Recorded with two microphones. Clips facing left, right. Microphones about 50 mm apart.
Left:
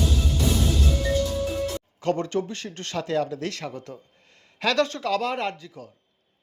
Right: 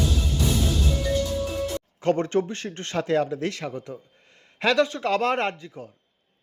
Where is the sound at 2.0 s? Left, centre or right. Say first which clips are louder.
Right 3 dB; right; by 5.0 s centre.